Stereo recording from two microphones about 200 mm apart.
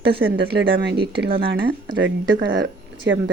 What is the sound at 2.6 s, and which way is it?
Speech, 65° right (ahead or behind).